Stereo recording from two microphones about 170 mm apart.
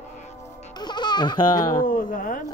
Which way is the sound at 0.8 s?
25° left (ahead or behind).